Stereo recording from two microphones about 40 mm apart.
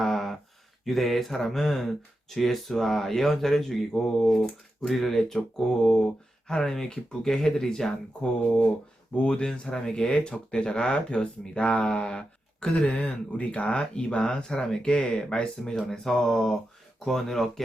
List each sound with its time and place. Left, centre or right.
0.0 s a sound: centre
0.9 s speech: centre
10.1 s speech: left
15.9 s speech: centre